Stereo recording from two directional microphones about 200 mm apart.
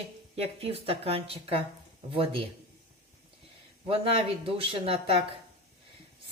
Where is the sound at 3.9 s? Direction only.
30° right (ahead or behind).